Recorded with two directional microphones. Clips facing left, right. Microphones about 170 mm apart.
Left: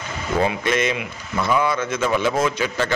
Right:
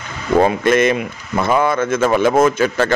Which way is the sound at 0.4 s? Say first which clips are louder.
Right 7 dB; 50° right (ahead or behind).